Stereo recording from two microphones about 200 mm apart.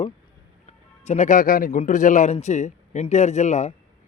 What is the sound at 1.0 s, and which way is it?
Speech, 35° left (ahead or behind).